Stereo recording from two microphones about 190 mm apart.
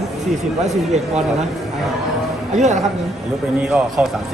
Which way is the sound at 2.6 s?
40° right (ahead or behind).